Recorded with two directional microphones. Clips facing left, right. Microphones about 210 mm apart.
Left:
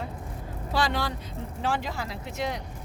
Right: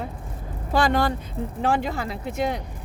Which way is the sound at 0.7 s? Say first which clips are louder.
Right 7 dB; 50° right (ahead or behind).